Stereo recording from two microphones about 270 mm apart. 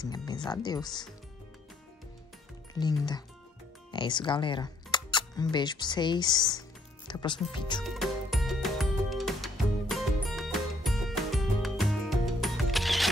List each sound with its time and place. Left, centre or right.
0.0 s speech: centre
2.7 s speech: centre
7.8 s music: centre